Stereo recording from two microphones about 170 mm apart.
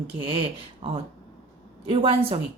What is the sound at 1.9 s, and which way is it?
Speech, 35° right (ahead or behind).